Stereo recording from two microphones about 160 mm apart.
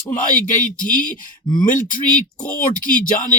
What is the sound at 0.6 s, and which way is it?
Speech, 55° left (ahead or behind).